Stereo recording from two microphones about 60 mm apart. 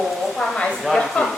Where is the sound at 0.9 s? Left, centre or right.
Centre.